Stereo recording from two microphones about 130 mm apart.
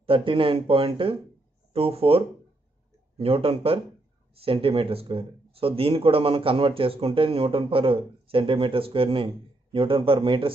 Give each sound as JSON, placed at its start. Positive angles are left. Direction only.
{"t": 0.0, "sound": "speech", "side_deg": -45}